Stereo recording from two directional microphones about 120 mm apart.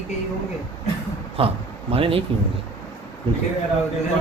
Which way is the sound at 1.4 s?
50° right (ahead or behind).